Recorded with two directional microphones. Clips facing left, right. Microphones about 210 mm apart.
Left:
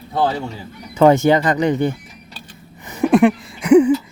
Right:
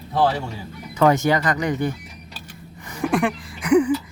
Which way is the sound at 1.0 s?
25° left (ahead or behind).